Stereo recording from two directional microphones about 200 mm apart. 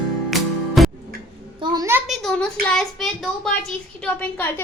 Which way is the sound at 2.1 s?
5° left (ahead or behind).